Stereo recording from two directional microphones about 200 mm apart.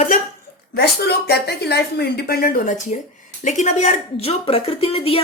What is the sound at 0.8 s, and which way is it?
A woman's voice, 55° left (ahead or behind).